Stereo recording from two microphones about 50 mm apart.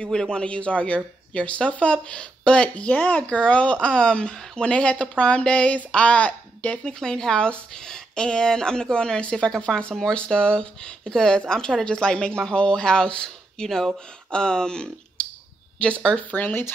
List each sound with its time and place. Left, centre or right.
0.0 s speech: centre; by 3.3 s left
3.3 s speech: left
6.8 s speech: centre
16.3 s speech: left